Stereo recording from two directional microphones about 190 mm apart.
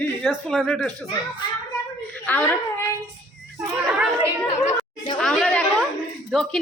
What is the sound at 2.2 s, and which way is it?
Speech, 10° left (ahead or behind).